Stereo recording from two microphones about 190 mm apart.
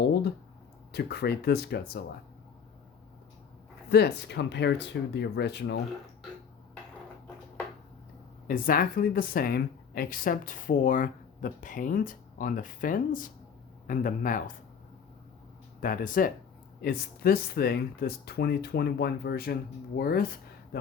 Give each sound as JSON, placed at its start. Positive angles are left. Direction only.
{"t": 0.9, "sound": "speech", "side_deg": 60}
{"t": 3.8, "sound": "speech", "side_deg": 60}
{"t": 8.4, "sound": "speech", "side_deg": 50}
{"t": 15.8, "sound": "speech", "side_deg": 50}